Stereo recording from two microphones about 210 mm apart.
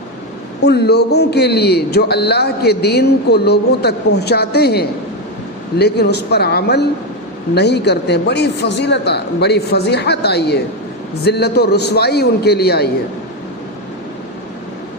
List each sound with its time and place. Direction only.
0.6 s a man's voice: 50° left (ahead or behind)